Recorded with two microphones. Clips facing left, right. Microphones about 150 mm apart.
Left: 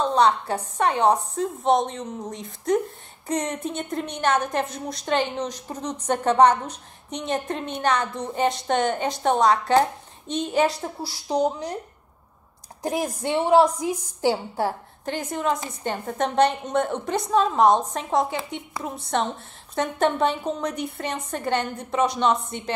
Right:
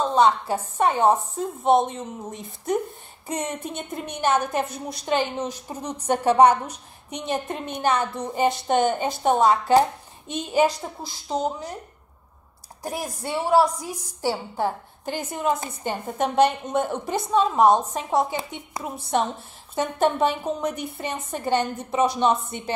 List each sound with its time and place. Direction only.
0.0 s a woman's voice: centre (ahead or behind)
11.0 s a woman's voice: 10° left (ahead or behind)
13.0 s a woman's voice: 5° right (ahead or behind)
13.8 s a woman's voice: 15° left (ahead or behind)
15.0 s a woman's voice: 5° right (ahead or behind)